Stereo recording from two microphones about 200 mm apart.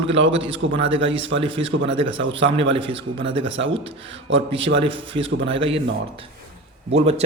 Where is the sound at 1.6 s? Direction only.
70° right (ahead or behind).